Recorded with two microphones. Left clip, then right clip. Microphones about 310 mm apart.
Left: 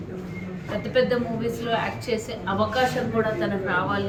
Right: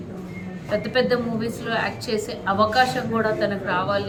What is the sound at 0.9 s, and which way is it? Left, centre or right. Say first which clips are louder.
A woman's voice: left 1 dB; centre.